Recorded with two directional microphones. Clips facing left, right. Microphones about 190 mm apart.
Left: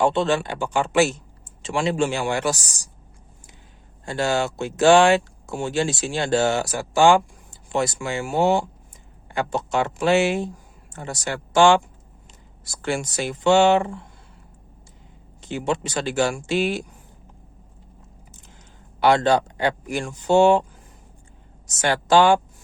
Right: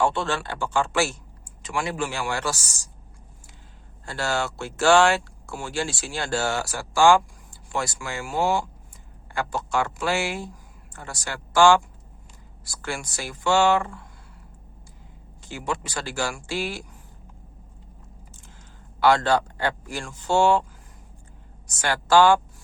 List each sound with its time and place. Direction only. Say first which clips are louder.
0.0 s speech: left 5 dB; 20° left (ahead or behind)
4.0 s speech: left 5 dB; 20° left (ahead or behind)
15.4 s speech: left 6 dB; 20° left (ahead or behind)
18.9 s speech: left 2 dB; 20° left (ahead or behind)
21.7 s speech: left 2 dB; 20° left (ahead or behind)